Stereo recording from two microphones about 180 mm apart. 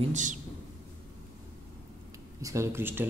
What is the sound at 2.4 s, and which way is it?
Speech, 15° right (ahead or behind).